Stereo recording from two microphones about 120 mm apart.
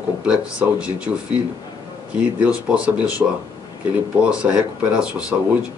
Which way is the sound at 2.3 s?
10° right (ahead or behind).